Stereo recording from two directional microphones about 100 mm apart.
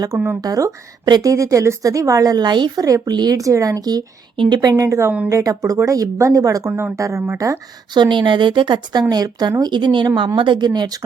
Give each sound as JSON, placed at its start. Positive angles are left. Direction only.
{"t": 0.4, "sound": "a woman's voice", "side_deg": -40}
{"t": 4.7, "sound": "a woman's voice", "side_deg": -30}
{"t": 6.7, "sound": "speech", "side_deg": -25}
{"t": 7.9, "sound": "speech", "side_deg": -50}